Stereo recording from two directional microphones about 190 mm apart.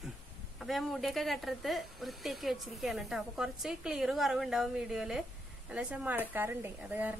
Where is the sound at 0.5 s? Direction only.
Centre (ahead or behind).